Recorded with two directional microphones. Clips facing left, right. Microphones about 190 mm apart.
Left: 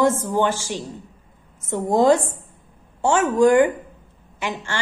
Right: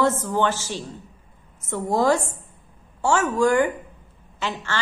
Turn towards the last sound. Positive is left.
turn(degrees=15)  # may be behind; listen again after turning